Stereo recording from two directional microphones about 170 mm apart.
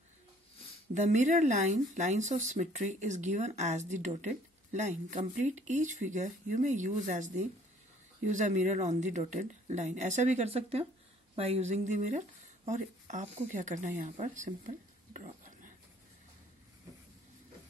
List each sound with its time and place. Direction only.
0.9 s speech: 45° right (ahead or behind)